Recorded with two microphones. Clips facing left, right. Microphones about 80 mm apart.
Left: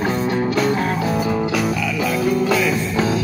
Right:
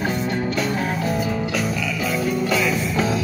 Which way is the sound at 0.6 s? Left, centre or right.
Left.